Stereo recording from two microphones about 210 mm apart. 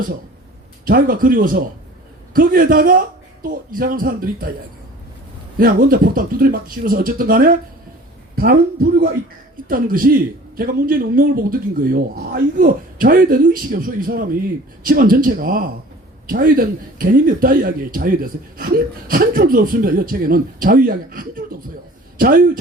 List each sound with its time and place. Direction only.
0.9 s a man's voice: 45° right (ahead or behind)
5.5 s a man's voice: 45° right (ahead or behind)